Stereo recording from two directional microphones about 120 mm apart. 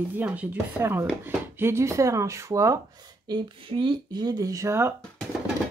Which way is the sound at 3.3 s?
40° right (ahead or behind).